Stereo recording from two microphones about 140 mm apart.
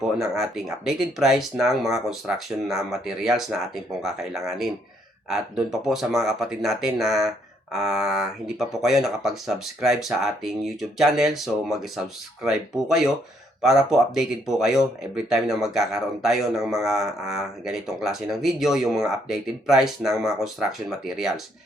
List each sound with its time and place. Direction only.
0.0 s speech: centre (ahead or behind)